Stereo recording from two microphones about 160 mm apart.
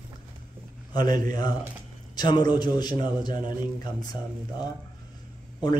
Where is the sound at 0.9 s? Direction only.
25° left (ahead or behind).